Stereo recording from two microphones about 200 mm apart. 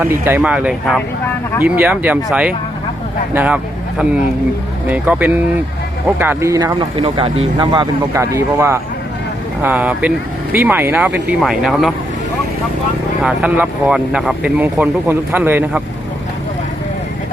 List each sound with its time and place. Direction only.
0.0 s speech: 10° right (ahead or behind)
13.2 s speech: 5° right (ahead or behind)